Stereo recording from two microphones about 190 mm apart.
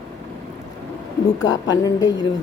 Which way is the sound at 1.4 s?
20° left (ahead or behind).